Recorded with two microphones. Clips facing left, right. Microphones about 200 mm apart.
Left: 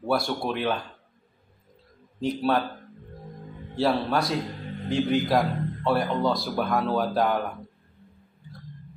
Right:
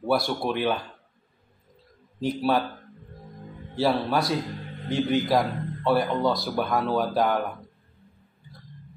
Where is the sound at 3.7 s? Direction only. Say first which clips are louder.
Even; centre (ahead or behind).